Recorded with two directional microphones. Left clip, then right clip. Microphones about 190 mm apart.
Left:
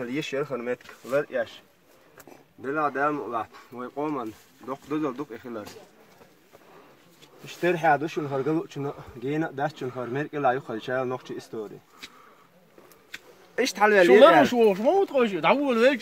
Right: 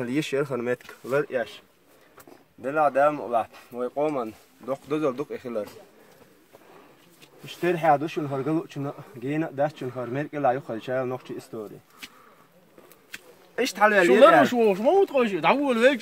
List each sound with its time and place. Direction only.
0.0 s speech: 50° right (ahead or behind)
2.6 s speech: 45° right (ahead or behind)
7.4 s speech: 20° right (ahead or behind)
8.2 s speech: 10° left (ahead or behind)
8.5 s speech: 15° right (ahead or behind)
13.6 s speech: 5° right (ahead or behind)
14.4 s speech: 15° left (ahead or behind); by 16.0 s 5° right (ahead or behind)